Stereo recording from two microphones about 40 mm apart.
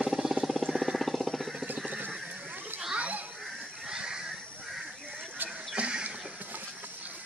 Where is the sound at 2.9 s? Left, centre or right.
Right.